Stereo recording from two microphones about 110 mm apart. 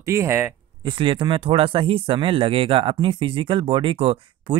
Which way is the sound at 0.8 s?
50° right (ahead or behind).